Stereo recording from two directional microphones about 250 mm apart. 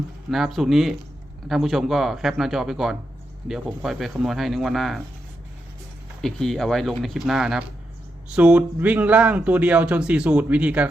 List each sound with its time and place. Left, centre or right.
0.3 s speech: centre
6.2 s speech: centre